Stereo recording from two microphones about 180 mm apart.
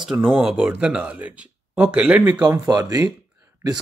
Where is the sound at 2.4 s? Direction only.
20° right (ahead or behind).